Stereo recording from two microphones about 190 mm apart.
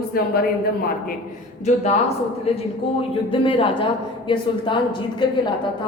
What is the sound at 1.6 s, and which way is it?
A woman's voice, 35° left (ahead or behind).